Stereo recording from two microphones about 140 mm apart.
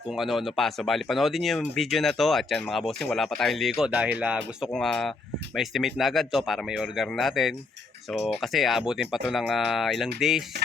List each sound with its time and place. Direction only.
0.1 s speech: centre (ahead or behind)